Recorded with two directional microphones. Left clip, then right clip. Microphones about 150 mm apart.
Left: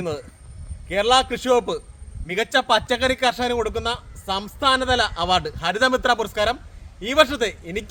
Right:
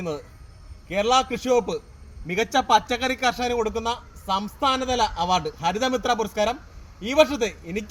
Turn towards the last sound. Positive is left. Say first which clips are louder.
# left 2 dB
turn(degrees=35)  # may be behind; listen again after turning